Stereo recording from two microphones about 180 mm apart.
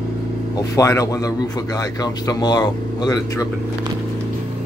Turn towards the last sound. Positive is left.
turn(degrees=20)  # may be behind; listen again after turning